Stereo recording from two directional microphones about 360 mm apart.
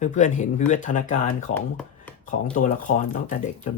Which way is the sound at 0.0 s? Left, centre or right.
Centre.